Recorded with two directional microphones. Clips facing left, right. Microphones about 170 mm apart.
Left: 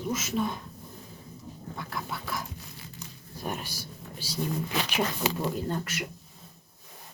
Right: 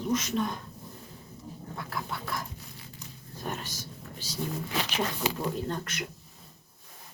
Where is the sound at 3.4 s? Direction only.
10° left (ahead or behind).